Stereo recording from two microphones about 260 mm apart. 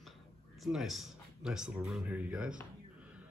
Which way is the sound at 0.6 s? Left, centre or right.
Centre.